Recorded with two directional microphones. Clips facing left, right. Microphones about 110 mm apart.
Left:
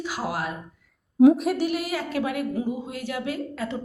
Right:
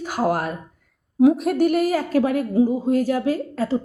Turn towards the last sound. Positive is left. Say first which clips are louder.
# right 7 dB
turn(degrees=-35)  # may be behind; listen again after turning